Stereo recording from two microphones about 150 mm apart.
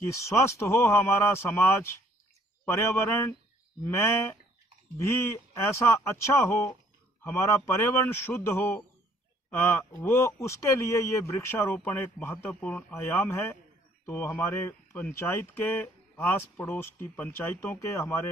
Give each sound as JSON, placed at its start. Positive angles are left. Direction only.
{"t": 0.0, "sound": "a man's voice", "side_deg": 20}